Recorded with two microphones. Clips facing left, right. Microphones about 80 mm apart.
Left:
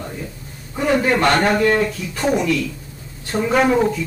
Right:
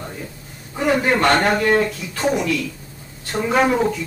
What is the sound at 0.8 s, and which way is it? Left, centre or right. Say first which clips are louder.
Speech: left 1 dB; centre.